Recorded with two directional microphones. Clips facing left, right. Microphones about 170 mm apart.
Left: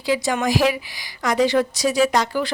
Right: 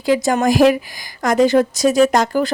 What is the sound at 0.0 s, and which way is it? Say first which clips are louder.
Speech: right 5 dB; 45° right (ahead or behind).